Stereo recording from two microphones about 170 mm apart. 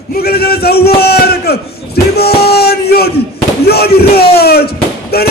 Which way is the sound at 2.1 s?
70° left (ahead or behind).